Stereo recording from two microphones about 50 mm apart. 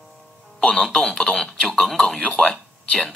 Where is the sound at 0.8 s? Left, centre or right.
Centre.